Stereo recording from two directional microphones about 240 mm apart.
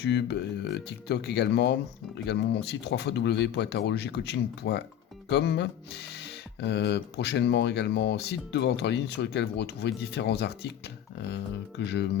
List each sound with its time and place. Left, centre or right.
0.0 s speech: left
11.8 s speech: left